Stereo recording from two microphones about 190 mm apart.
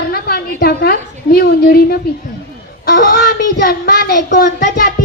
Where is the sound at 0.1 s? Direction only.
55° left (ahead or behind).